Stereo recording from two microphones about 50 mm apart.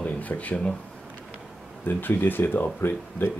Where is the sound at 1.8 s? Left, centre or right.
Left.